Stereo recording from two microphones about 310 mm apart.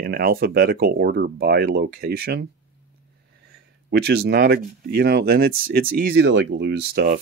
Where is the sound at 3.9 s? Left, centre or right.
Right.